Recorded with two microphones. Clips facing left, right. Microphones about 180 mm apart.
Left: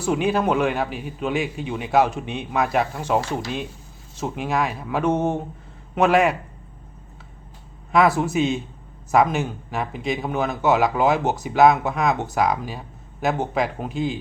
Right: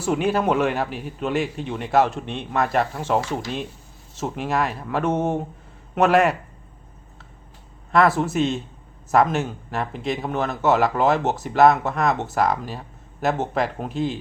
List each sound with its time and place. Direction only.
0.0 s speech: centre (ahead or behind)
7.9 s speech: centre (ahead or behind)